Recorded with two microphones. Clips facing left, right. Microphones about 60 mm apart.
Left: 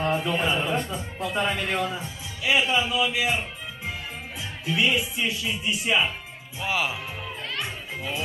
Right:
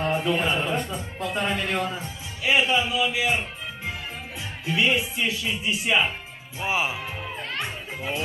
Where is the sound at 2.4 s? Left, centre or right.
Right.